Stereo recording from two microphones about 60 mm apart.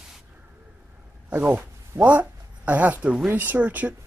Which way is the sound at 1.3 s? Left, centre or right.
Right.